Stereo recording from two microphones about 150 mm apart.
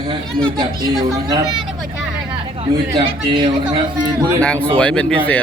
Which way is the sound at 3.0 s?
35° right (ahead or behind).